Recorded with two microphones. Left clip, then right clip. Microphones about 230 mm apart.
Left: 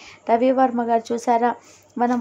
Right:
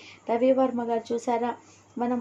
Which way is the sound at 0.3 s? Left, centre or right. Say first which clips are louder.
Left 5 dB; left.